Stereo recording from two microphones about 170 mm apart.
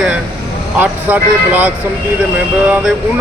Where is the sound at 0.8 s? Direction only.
10° right (ahead or behind).